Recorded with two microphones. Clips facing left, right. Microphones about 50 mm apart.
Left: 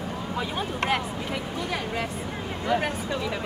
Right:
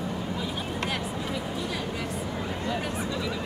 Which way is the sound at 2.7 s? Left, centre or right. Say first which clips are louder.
Left 7 dB; left.